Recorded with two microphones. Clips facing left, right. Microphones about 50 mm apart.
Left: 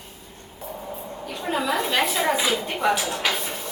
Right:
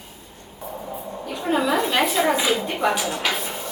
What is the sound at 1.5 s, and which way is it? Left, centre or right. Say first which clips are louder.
Speech: right 3 dB; centre.